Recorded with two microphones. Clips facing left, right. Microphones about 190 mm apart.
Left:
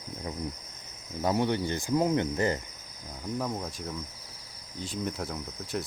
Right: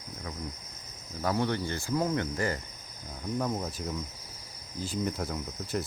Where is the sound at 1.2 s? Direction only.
20° left (ahead or behind).